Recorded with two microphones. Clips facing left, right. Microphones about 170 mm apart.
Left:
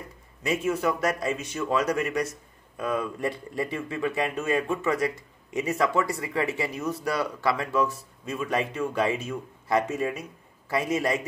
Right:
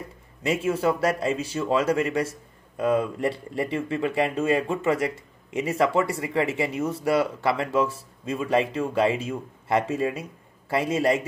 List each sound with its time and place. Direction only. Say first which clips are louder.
0.4 s speech: right 2 dB; 30° right (ahead or behind)